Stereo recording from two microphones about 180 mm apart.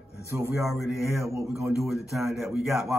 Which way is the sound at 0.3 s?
15° right (ahead or behind).